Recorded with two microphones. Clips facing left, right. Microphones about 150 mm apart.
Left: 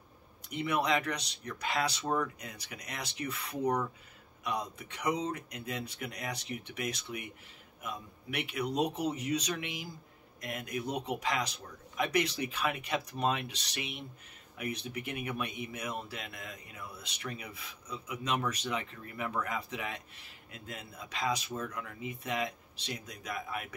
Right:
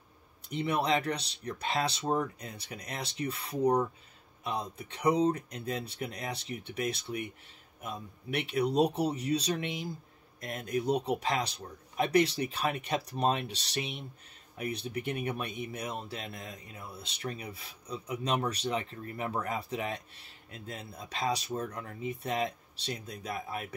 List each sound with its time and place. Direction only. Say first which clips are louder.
0.5 s speech: right 1 dB; 30° right (ahead or behind)